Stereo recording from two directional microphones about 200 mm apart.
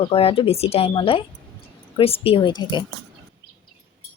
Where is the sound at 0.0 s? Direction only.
30° left (ahead or behind).